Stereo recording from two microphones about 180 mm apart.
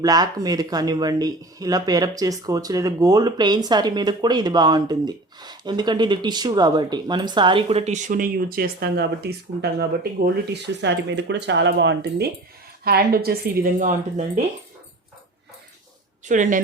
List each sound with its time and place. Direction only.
0.0 s speech: 20° right (ahead or behind); by 12.3 s 75° right (ahead or behind)
12.8 s a woman's voice: 60° right (ahead or behind); by 14.4 s 45° right (ahead or behind)
16.2 s speech: 45° right (ahead or behind)